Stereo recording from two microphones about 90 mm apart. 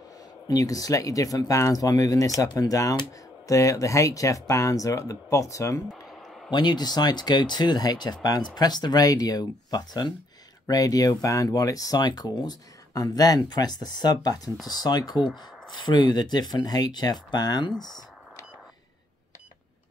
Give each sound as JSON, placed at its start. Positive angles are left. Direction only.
{"t": 0.5, "sound": "speech", "side_deg": 40}
{"t": 5.9, "sound": "a sound", "side_deg": 0}
{"t": 6.5, "sound": "speech", "side_deg": 55}